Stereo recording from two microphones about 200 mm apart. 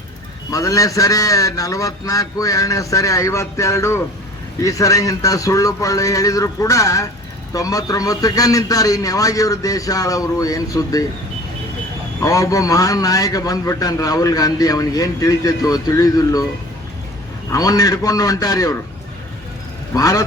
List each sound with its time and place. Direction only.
0.5 s a man's voice: 15° left (ahead or behind)
12.2 s a man's voice: 15° left (ahead or behind)
17.5 s a man's voice: 15° left (ahead or behind)
19.9 s a man's voice: 15° left (ahead or behind)